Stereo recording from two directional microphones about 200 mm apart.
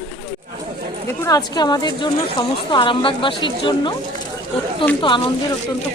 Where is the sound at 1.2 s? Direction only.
20° left (ahead or behind).